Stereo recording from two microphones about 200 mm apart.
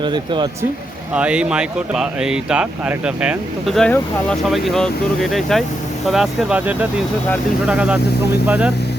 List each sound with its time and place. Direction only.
0.0 s speech: 25° right (ahead or behind)
1.1 s speech: 5° right (ahead or behind)